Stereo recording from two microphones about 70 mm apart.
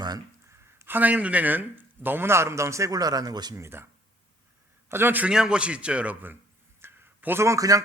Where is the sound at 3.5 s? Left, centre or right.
Right.